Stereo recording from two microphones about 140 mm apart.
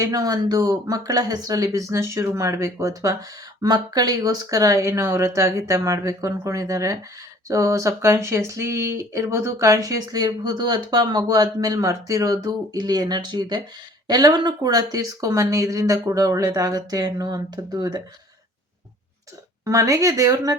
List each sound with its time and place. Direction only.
0.0 s speech: 25° right (ahead or behind)
19.6 s speech: 25° right (ahead or behind)